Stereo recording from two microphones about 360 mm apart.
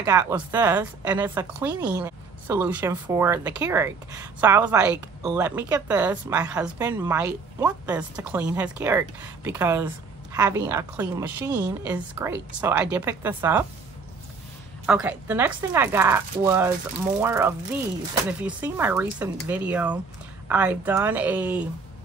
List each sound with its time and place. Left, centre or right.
0.0 s a woman's voice: centre
14.9 s a woman's voice: centre